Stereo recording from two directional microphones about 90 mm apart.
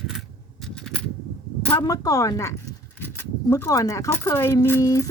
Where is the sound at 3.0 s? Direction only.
25° left (ahead or behind).